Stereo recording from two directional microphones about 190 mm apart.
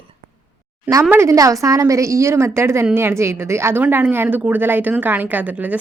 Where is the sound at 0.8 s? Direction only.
10° right (ahead or behind).